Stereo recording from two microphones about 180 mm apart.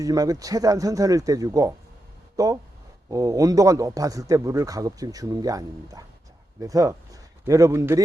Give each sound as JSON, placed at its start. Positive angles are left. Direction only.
{"t": 0.0, "sound": "a man's voice", "side_deg": -20}